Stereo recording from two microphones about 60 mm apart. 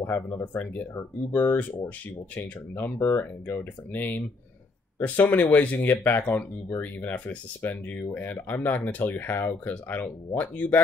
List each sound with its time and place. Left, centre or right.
0.0 s speech: left